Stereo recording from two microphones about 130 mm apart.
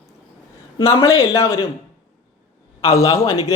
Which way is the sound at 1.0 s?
20° left (ahead or behind).